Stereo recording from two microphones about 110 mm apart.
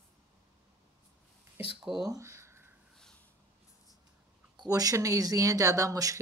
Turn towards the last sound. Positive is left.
turn(degrees=-30)  # may be behind; listen again after turning